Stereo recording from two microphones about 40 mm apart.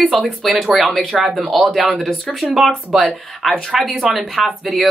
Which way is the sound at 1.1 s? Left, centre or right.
Centre.